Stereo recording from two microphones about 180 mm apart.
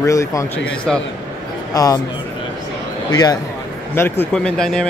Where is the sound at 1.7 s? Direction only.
20° left (ahead or behind).